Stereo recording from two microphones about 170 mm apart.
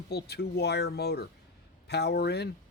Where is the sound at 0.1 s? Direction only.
70° left (ahead or behind).